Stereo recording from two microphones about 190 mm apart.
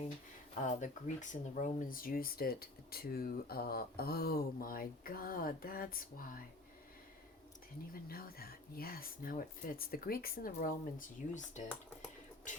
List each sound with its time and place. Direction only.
0.6 s speech: 40° left (ahead or behind)
7.9 s speech: 50° left (ahead or behind)
12.5 s music: 40° left (ahead or behind)